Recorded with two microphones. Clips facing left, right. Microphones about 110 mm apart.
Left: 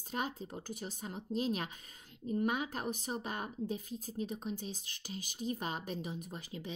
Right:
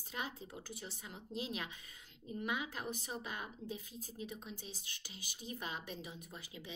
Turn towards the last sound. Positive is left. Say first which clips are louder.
# left 6 dB
turn(degrees=40)  # may be behind; listen again after turning